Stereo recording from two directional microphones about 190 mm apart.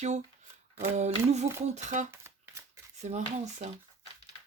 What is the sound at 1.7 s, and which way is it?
Speech, 40° right (ahead or behind).